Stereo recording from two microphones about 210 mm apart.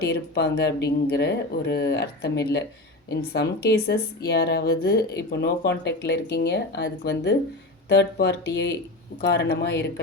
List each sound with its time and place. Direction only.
0.0 s speech: 50° left (ahead or behind)